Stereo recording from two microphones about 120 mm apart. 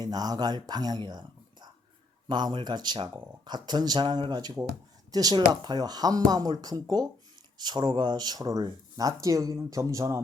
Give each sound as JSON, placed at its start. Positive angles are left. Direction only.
{"t": 0.0, "sound": "speech", "side_deg": -35}
{"t": 2.2, "sound": "speech", "side_deg": -40}